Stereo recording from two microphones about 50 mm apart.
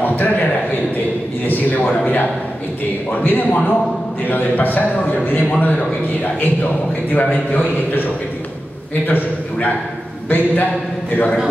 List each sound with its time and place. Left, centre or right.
0.0 s a man's voice: left